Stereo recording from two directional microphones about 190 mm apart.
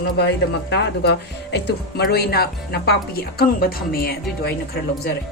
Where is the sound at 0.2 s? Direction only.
60° left (ahead or behind).